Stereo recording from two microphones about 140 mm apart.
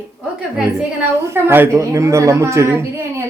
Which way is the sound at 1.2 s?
15° right (ahead or behind).